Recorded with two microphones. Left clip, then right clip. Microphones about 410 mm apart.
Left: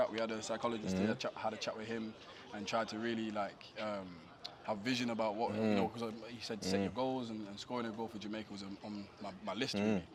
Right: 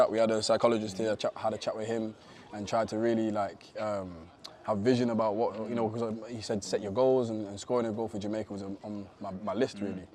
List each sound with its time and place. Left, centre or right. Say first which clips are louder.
0.0 s a man's voice: right 11 dB; right
1.2 s a man's voice: right 8 dB; right